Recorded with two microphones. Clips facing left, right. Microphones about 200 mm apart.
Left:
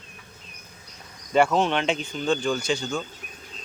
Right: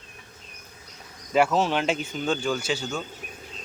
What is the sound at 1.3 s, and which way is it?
Speech, 5° right (ahead or behind).